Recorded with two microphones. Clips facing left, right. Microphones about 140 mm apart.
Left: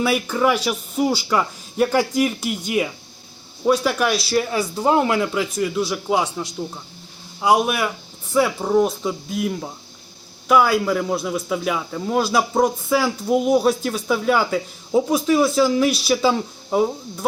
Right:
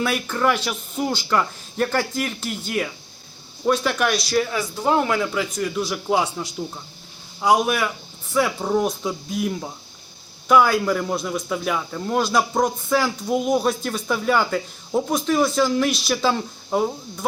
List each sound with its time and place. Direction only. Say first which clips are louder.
0.0 s speech: left 3 dB; 10° left (ahead or behind)